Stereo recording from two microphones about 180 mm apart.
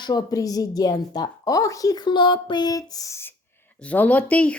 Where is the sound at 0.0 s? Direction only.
20° left (ahead or behind).